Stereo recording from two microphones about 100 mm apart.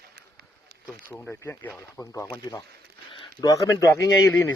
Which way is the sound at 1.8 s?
35° left (ahead or behind).